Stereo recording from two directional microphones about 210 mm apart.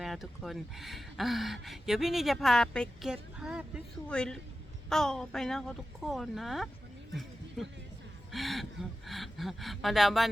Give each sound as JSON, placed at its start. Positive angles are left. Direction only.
{"t": 0.0, "sound": "speech", "side_deg": 0}
{"t": 7.1, "sound": "a sound", "side_deg": 0}
{"t": 8.3, "sound": "speech", "side_deg": 0}